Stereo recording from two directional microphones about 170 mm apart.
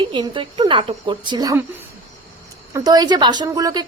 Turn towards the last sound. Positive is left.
turn(degrees=-20)  # may be behind; listen again after turning